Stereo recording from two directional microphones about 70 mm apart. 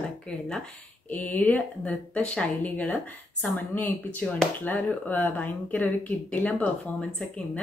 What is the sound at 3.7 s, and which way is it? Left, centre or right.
Speech, left.